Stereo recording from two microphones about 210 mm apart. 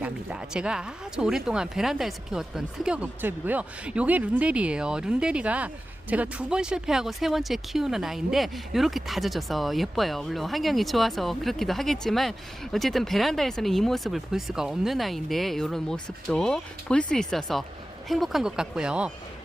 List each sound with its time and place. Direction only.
0.0 s speech: 5° right (ahead or behind)